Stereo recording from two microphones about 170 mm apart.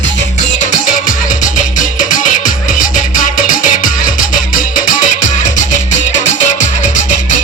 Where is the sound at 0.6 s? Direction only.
55° left (ahead or behind).